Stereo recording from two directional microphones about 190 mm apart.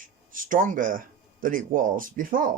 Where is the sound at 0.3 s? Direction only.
45° right (ahead or behind).